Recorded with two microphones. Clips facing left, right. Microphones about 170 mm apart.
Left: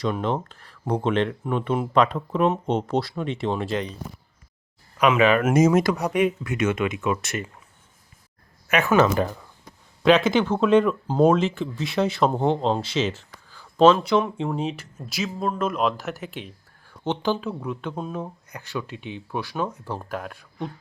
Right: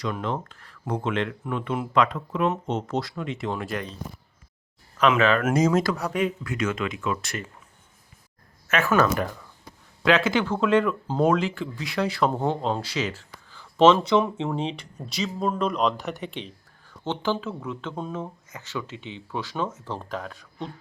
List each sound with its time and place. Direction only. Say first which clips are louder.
0.0 s speech: left 4 dB; 30° left (ahead or behind)
4.9 s speech: left 2 dB; 10° left (ahead or behind)
8.6 s speech: left 3 dB; 15° left (ahead or behind)
13.7 s speech: left 1 dB; 5° left (ahead or behind)
17.0 s speech: left 2 dB; 15° left (ahead or behind)